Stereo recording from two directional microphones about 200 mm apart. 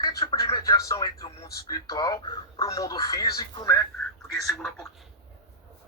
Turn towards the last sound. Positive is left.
turn(degrees=0)  # may be behind; listen again after turning